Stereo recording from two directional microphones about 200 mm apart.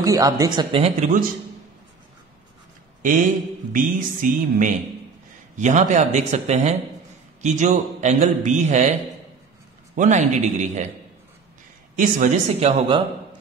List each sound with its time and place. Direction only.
0.0 s speech: 15° right (ahead or behind); by 1.2 s 35° right (ahead or behind)
3.7 s a man's voice: 40° right (ahead or behind)
9.9 s a man's voice: 35° right (ahead or behind)
11.9 s a man's voice: 40° right (ahead or behind)